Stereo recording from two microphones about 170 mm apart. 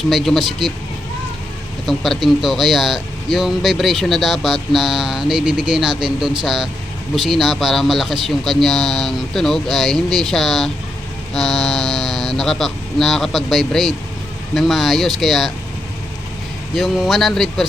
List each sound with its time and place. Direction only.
0.1 s speech: centre (ahead or behind)
1.9 s speech: centre (ahead or behind)
16.7 s speech: centre (ahead or behind)